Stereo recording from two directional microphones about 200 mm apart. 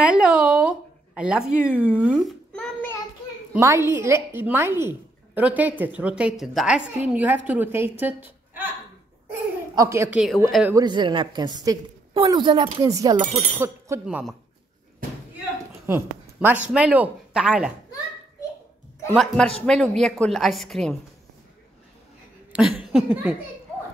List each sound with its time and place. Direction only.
0.0 s a sound: 5° right (ahead or behind)
3.5 s a woman's voice: 15° right (ahead or behind)
9.8 s a woman's voice: 15° right (ahead or behind)
15.9 s a woman's voice: 10° right (ahead or behind)
19.1 s a woman's voice: 5° left (ahead or behind)
22.5 s laughter: centre (ahead or behind)